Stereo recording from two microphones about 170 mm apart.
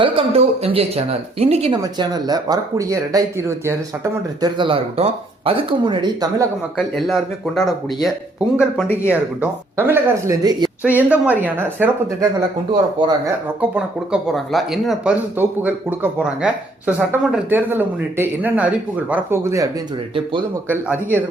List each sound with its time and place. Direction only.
0.0 s speech: 35° right (ahead or behind)
1.8 s speech: 25° right (ahead or behind)
6.7 s speech: centre (ahead or behind)
9.0 s speech: 10° right (ahead or behind)
10.8 s speech: 10° right (ahead or behind)
13.0 s speech: 25° right (ahead or behind)
13.6 s speech: 5° right (ahead or behind)